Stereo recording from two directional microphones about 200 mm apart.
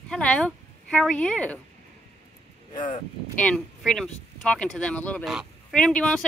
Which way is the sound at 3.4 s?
5° left (ahead or behind).